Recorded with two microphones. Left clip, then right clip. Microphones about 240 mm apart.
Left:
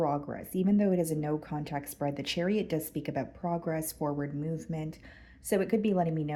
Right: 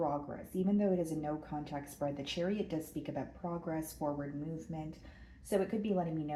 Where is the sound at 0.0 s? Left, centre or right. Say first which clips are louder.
Left 5 dB; left.